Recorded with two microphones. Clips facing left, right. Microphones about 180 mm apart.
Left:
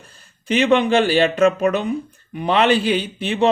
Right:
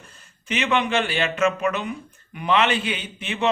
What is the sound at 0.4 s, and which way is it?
Speech, 35° left (ahead or behind).